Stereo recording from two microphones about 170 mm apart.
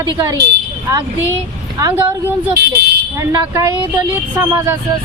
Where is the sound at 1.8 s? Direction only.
15° right (ahead or behind).